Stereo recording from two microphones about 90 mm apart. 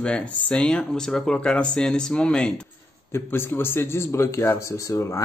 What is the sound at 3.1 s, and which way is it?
Speech, 25° left (ahead or behind).